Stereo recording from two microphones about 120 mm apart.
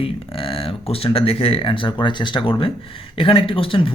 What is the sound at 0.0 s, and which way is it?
Speech, 50° left (ahead or behind).